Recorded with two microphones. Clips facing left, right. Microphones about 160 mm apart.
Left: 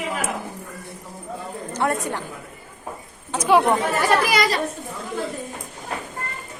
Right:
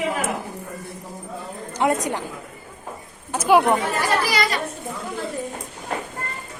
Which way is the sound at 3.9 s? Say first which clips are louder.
Left 3 dB; 50° left (ahead or behind).